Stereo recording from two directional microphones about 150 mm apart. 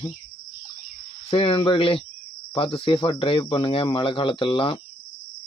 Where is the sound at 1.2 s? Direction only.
40° left (ahead or behind).